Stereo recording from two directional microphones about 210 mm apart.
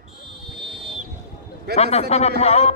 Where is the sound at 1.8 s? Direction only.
30° left (ahead or behind).